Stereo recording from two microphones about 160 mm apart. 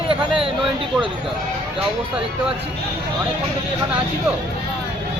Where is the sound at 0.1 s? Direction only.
35° right (ahead or behind).